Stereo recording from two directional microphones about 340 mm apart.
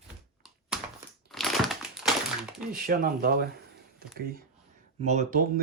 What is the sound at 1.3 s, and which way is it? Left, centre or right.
Crushing, centre.